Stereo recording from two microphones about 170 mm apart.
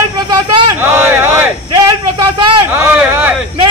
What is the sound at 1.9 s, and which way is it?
Speech, 25° right (ahead or behind).